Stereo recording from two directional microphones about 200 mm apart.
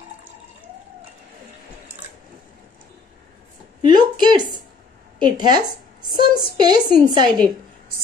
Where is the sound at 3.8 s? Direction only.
20° right (ahead or behind).